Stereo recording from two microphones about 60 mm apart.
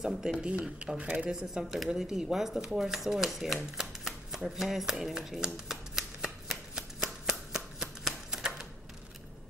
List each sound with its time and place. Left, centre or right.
0.0 s speech: centre; by 1.3 s right
1.3 s speech: centre
3.7 s shuffling cards: centre